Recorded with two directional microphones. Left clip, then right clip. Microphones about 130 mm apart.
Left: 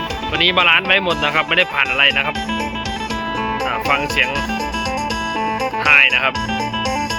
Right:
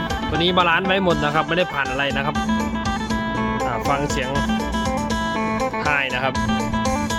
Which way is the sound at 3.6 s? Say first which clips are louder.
Left 4 dB; 30° right (ahead or behind).